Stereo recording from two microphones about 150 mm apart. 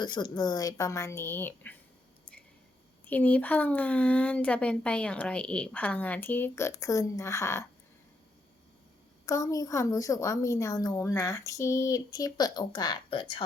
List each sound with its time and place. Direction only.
0.0 s a woman's voice: 30° left (ahead or behind); by 1.7 s 15° left (ahead or behind)
3.1 s speech: 10° left (ahead or behind)
9.2 s a woman's voice: 20° left (ahead or behind)